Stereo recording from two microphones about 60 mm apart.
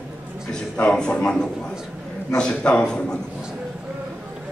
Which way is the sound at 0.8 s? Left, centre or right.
Centre.